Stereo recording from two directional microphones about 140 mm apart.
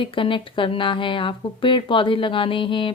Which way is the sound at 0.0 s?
35° left (ahead or behind).